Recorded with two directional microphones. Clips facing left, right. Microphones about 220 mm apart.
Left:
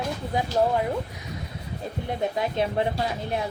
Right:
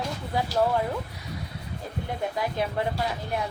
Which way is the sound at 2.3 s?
25° left (ahead or behind).